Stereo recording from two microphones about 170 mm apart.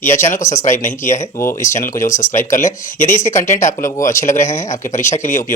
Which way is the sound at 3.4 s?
45° left (ahead or behind).